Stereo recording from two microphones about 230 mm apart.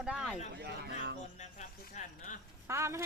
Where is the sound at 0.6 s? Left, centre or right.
Right.